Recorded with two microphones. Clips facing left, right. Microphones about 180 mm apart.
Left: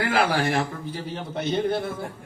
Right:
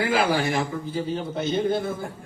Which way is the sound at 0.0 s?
75° left (ahead or behind).